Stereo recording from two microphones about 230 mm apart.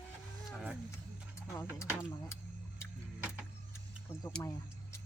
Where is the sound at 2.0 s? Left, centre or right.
Centre.